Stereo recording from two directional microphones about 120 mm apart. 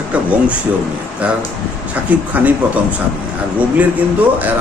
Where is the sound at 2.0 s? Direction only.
15° right (ahead or behind).